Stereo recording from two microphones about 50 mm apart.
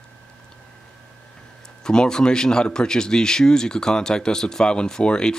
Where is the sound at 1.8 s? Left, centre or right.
Centre.